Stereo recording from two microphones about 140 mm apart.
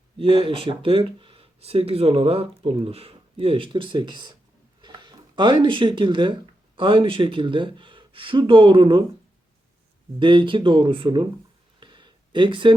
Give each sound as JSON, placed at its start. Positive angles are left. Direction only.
{"t": 0.2, "sound": "speech", "side_deg": -40}
{"t": 10.2, "sound": "speech", "side_deg": -35}
{"t": 11.8, "sound": "a sound", "side_deg": -35}